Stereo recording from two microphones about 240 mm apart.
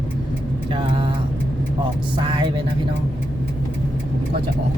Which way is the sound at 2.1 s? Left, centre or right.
Centre.